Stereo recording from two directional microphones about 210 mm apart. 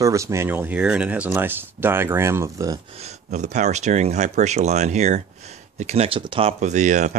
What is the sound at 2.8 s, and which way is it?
Speech, 30° right (ahead or behind).